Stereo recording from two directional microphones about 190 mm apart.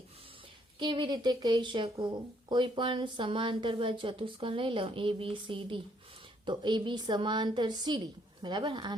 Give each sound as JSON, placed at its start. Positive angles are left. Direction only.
{"t": 0.8, "sound": "speech", "side_deg": -25}